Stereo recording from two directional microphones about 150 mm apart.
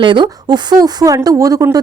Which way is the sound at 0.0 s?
35° right (ahead or behind).